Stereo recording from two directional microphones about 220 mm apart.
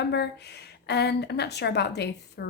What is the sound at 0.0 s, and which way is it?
A woman's voice, 50° left (ahead or behind).